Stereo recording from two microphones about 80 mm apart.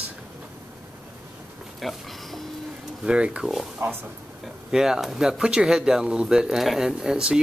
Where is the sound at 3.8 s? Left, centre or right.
Right.